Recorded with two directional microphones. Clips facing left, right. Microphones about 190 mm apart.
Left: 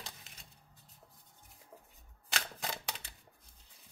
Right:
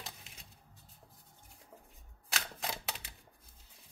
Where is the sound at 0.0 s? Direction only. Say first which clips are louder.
Right 1 dB; centre (ahead or behind).